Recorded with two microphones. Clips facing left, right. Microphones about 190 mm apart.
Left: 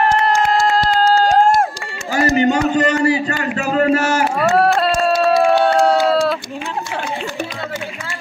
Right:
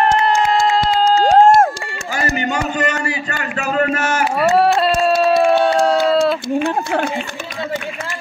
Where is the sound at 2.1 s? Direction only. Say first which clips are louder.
Left 6 dB; 35° left (ahead or behind).